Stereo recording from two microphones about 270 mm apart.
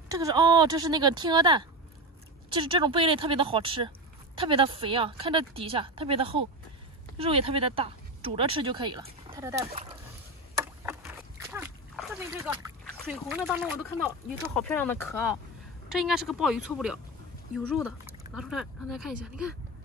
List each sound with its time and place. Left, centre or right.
0.1 s a woman's voice: centre
10.5 s a sound: centre
13.1 s speech: centre
13.8 s speech: centre